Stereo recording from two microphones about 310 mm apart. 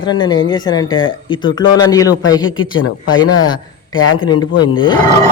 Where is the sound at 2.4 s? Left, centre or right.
Left.